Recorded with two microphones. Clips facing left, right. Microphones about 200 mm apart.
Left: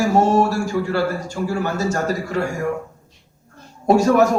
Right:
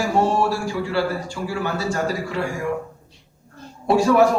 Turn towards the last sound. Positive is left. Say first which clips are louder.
# left 1 dB
turn(degrees=45)  # may be behind; listen again after turning